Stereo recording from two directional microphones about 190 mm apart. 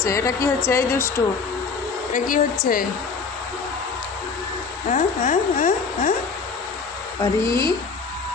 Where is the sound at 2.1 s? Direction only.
45° left (ahead or behind).